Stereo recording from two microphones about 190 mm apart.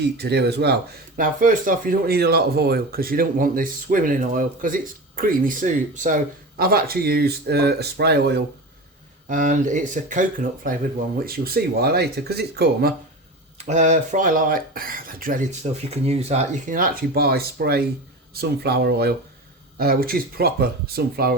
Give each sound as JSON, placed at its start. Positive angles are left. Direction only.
{"t": 0.2, "sound": "speech", "side_deg": -60}
{"t": 6.6, "sound": "speech", "side_deg": -50}
{"t": 9.3, "sound": "speech", "side_deg": -45}
{"t": 13.7, "sound": "speech", "side_deg": -40}